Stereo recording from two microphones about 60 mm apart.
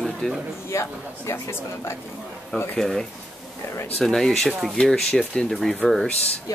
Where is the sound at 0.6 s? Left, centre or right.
Left.